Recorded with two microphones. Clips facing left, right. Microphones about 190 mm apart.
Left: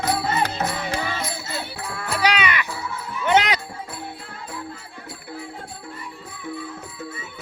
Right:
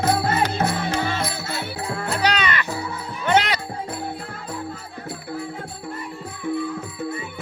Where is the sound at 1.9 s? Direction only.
35° right (ahead or behind).